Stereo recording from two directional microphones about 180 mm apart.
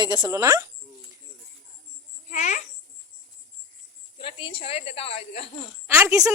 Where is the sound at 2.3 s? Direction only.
40° left (ahead or behind).